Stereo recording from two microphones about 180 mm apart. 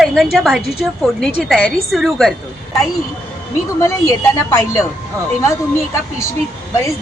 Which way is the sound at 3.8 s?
15° left (ahead or behind).